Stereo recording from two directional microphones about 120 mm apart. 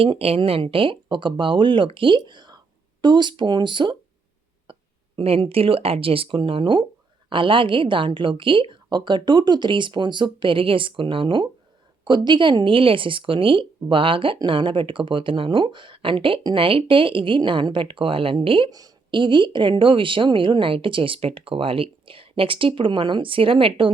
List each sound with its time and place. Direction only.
0.0 s a woman's voice: 50° right (ahead or behind)